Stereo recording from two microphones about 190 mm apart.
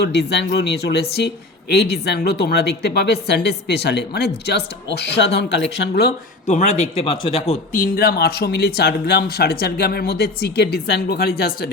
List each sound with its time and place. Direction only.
0.0 s a man's voice: 60° left (ahead or behind)
6.5 s a man's voice: 35° left (ahead or behind)